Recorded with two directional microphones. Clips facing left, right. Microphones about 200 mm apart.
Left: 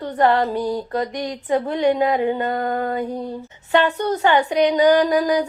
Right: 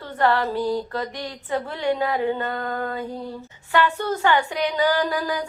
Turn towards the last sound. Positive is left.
turn(degrees=20)  # may be behind; listen again after turning